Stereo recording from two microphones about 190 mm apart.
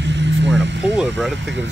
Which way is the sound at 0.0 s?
65° right (ahead or behind).